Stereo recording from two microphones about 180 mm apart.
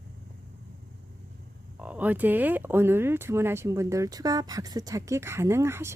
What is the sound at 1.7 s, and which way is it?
Speech, 10° right (ahead or behind).